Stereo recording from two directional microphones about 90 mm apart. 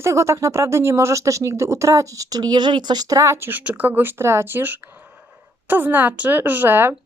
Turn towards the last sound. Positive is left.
turn(degrees=-25)  # may be behind; listen again after turning